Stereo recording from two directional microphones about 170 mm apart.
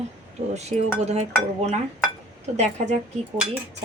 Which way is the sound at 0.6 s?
40° right (ahead or behind).